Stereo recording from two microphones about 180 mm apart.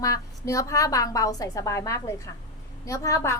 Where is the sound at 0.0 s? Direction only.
20° left (ahead or behind).